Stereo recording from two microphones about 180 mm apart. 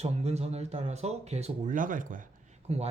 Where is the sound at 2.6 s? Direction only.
35° right (ahead or behind).